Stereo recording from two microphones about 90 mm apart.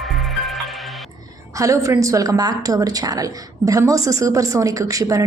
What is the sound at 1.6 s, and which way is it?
A woman's voice, 35° right (ahead or behind).